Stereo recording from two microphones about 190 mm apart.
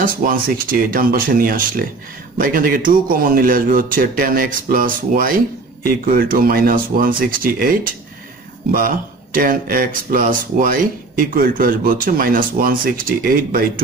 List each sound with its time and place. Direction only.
0.0 s speech: 50° right (ahead or behind)